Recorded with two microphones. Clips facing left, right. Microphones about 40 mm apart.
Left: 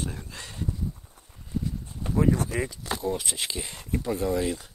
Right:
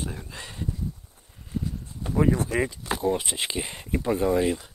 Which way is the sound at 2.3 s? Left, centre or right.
Right.